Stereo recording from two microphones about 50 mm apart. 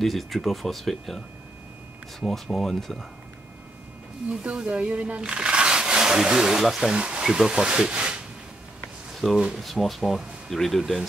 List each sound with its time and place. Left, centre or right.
0.0 s speech: centre
4.3 s speech: right
9.1 s a sound: centre
9.6 s speech: centre